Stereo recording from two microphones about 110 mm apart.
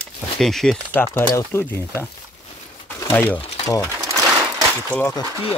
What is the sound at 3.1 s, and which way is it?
Speech, 15° left (ahead or behind).